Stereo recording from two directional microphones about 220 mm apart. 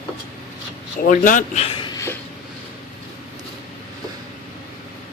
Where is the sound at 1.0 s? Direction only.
35° left (ahead or behind).